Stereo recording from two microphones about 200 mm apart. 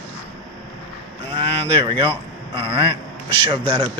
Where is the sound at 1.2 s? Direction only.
25° right (ahead or behind).